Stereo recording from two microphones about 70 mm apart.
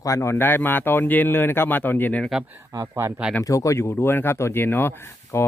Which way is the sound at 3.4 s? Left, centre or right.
Left.